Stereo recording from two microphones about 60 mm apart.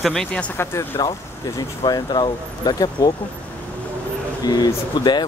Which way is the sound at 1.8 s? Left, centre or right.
Left.